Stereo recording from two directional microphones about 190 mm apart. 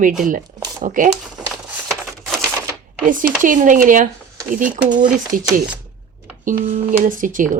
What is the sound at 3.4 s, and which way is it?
Speech, 45° right (ahead or behind).